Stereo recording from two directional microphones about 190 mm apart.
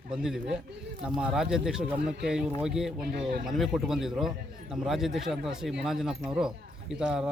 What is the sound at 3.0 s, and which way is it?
Speech, 55° right (ahead or behind).